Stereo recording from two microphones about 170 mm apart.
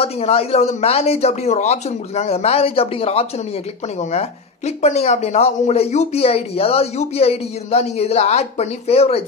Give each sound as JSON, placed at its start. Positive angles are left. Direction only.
{"t": 0.0, "sound": "speech", "side_deg": 35}